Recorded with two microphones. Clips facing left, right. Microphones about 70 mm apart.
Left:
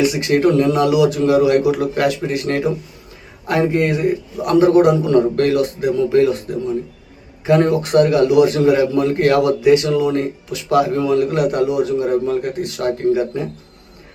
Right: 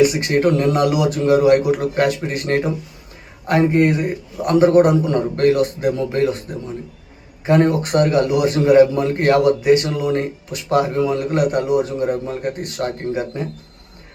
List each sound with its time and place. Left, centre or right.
0.1 s a man's voice: right
7.4 s a man's voice: right